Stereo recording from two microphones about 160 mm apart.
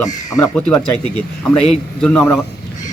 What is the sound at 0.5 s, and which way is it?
A man's voice, 5° left (ahead or behind).